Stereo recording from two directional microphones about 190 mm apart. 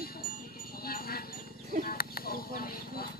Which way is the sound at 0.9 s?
50° left (ahead or behind).